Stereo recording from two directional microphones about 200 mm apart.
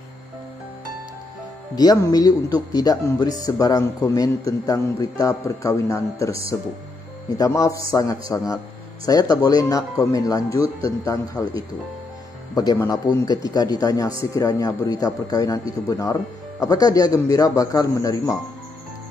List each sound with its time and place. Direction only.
1.8 s a man's voice: 20° left (ahead or behind)
12.8 s a man's voice: 20° left (ahead or behind)